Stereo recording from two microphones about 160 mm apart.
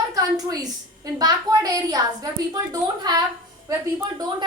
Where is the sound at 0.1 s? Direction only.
25° right (ahead or behind).